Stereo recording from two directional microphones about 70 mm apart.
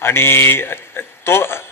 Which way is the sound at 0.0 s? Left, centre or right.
Left.